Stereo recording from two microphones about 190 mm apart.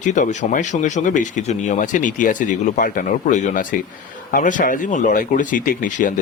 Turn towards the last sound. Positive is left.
turn(degrees=45)  # may be behind; listen again after turning